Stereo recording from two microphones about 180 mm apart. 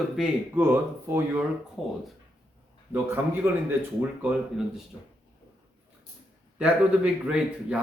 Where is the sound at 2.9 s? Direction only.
10° right (ahead or behind).